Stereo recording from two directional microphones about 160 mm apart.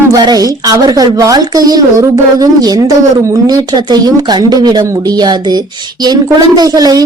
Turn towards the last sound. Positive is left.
turn(degrees=-25)  # may be behind; listen again after turning